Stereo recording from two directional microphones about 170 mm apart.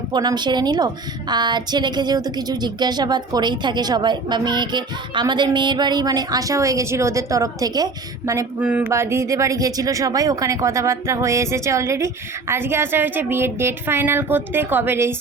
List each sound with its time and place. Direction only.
0.1 s a woman's voice: 25° right (ahead or behind)
8.6 s speech: 10° right (ahead or behind)